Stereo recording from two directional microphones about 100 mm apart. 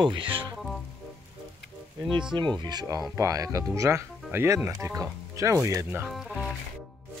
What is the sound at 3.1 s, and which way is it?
Speech, 35° right (ahead or behind).